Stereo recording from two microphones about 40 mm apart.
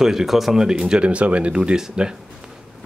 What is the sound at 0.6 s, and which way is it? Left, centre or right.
Speech, right.